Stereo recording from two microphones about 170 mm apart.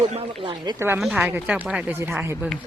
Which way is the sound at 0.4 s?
25° right (ahead or behind).